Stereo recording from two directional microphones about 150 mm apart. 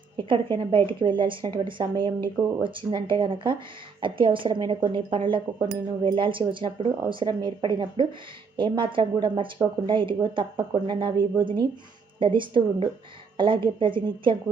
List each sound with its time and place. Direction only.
0.2 s speech: 35° right (ahead or behind)